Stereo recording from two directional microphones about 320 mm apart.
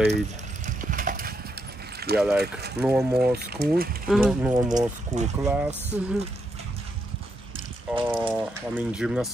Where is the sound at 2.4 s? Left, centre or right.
Right.